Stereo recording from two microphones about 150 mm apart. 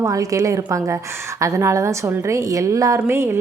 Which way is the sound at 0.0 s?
20° right (ahead or behind).